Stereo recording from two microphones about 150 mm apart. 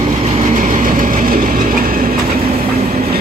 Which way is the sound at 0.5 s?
60° right (ahead or behind).